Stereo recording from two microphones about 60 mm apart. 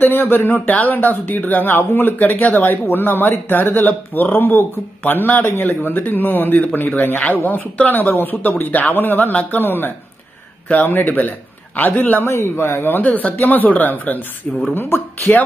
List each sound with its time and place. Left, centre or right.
0.0 s speech: left